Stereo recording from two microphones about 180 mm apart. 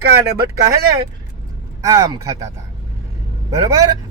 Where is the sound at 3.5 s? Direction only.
20° right (ahead or behind).